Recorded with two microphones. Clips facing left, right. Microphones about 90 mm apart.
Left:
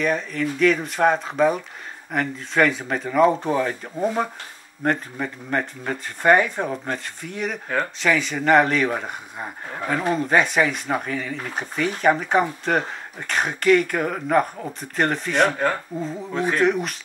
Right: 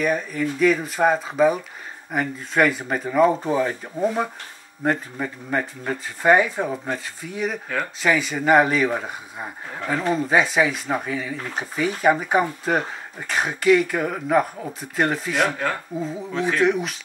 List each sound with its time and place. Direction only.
0.0 s speech: 5° right (ahead or behind)
16.3 s speech: 45° left (ahead or behind)
16.6 s speech: centre (ahead or behind)